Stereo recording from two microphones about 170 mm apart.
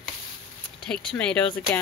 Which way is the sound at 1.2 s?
5° left (ahead or behind).